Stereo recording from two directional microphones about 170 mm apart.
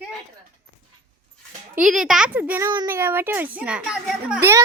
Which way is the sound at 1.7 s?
5° right (ahead or behind).